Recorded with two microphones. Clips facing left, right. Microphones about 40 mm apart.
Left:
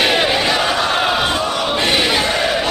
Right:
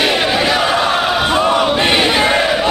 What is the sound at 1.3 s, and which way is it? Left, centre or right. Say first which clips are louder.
Battle cry: right 6 dB; right.